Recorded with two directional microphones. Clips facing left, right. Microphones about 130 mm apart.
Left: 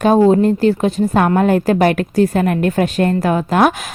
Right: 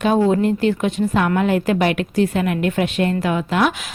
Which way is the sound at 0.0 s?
40° left (ahead or behind).